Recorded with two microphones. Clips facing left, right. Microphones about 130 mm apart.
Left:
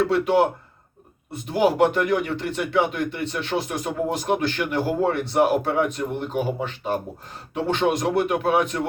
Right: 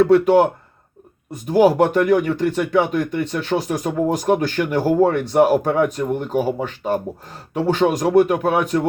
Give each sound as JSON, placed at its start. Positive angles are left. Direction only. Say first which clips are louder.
{"t": 0.1, "sound": "speech", "louder": "right 6 dB", "side_deg": -45}